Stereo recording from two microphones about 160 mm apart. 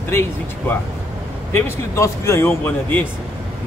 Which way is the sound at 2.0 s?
15° left (ahead or behind).